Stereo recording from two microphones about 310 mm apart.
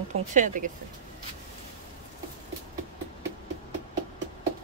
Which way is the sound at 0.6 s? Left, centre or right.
Right.